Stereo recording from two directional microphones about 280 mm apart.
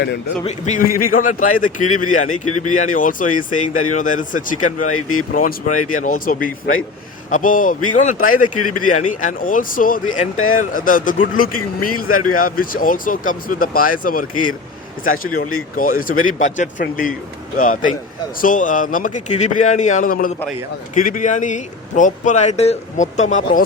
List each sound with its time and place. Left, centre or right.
0.4 s speech: left
2.5 s speech: left
2.7 s speech: left
4.9 s speech: left
5.3 s speech: left
10.3 s speech: left
10.6 s speech: left
11.8 s speech: left
12.3 s speech: left
18.3 s speech: left